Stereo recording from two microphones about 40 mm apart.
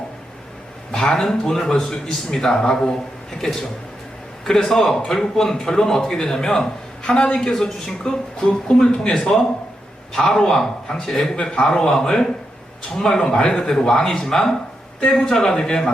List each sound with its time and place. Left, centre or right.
0.9 s a man's voice: centre